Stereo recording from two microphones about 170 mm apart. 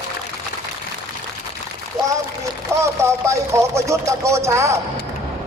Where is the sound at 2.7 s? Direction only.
15° right (ahead or behind).